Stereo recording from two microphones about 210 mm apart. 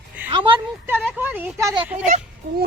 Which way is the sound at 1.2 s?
10° right (ahead or behind).